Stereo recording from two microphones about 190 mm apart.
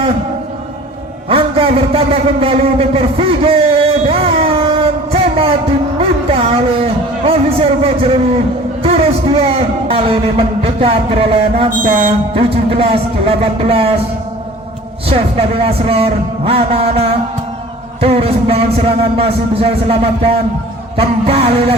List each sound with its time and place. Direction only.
1.3 s a sound: 30° right (ahead or behind)
8.8 s a man's voice: 30° right (ahead or behind)
15.0 s a man's voice: 30° right (ahead or behind)